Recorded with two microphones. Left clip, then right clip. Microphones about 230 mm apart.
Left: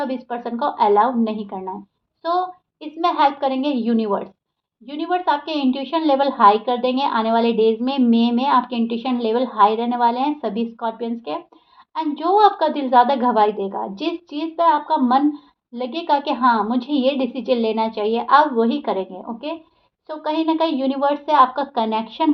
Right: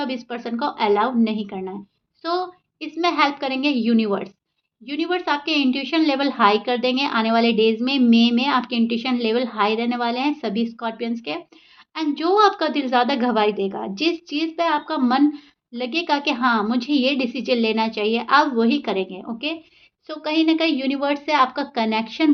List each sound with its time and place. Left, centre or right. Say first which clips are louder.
0.0 s a woman's voice: left 2 dB; right